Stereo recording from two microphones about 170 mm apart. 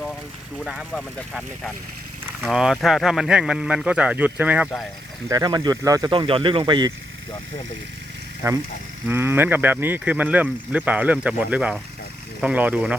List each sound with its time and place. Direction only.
0.6 s speech: 5° right (ahead or behind)
5.3 s speech: 25° right (ahead or behind)
8.4 s speech: 15° right (ahead or behind)